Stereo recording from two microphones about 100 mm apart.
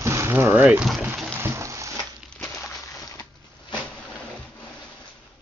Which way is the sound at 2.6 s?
35° left (ahead or behind).